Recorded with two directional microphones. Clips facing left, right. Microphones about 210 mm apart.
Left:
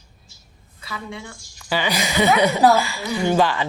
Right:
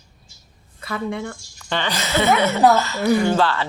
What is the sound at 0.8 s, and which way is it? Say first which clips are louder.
Speech: right 8 dB; 55° right (ahead or behind).